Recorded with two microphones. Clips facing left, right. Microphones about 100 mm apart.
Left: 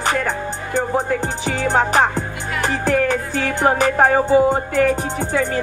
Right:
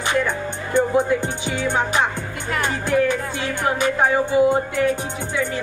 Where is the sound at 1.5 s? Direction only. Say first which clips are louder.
Left 5 dB; 40° left (ahead or behind).